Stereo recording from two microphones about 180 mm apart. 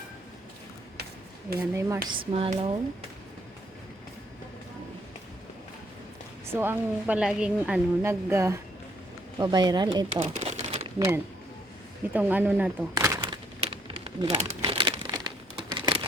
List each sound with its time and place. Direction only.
1.5 s a woman's voice: 15° right (ahead or behind)
2.0 s speech: 30° right (ahead or behind)
6.5 s a woman's voice: 10° right (ahead or behind)
10.2 s crumpling: 40° right (ahead or behind)
12.1 s a woman's voice: 10° right (ahead or behind)
13.6 s crumpling: 30° right (ahead or behind)
15.7 s a sound: 25° right (ahead or behind)